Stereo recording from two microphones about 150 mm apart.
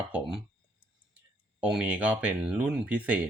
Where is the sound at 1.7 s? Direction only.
10° right (ahead or behind).